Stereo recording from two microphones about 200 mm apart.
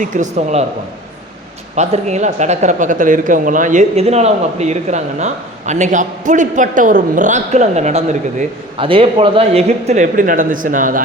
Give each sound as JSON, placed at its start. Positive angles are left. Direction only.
{"t": 0.0, "sound": "speech", "side_deg": -40}
{"t": 1.7, "sound": "speech", "side_deg": -35}